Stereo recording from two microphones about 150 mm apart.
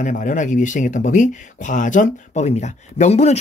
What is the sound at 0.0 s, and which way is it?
Speech, 55° left (ahead or behind).